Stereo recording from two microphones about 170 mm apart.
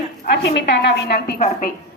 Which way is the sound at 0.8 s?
70° left (ahead or behind).